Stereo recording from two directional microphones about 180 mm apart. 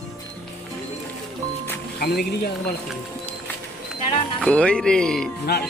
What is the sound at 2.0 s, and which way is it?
Speech, 55° left (ahead or behind).